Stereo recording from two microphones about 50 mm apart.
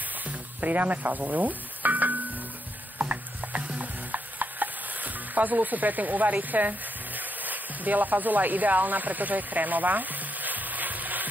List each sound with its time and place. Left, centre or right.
0.2 s sizzle: right
3.0 s stir: right
7.2 s a sound: right